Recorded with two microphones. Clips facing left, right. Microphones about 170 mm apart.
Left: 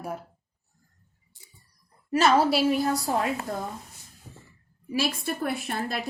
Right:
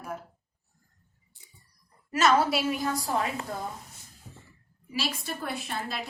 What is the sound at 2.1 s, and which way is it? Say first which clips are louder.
Speech: left 3 dB; 30° left (ahead or behind).